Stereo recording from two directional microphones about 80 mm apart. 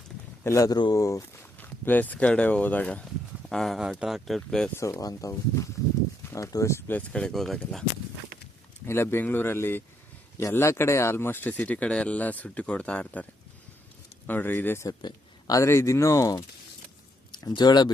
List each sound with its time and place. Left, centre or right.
0.4 s speech: left
1.5 s speech: left
3.5 s speech: centre
4.8 s speech: left
7.1 s speech: centre
8.9 s speech: left
14.3 s speech: left
14.8 s speech: left
17.5 s speech: left